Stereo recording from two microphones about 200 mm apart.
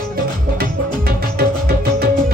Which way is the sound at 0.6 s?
50° right (ahead or behind).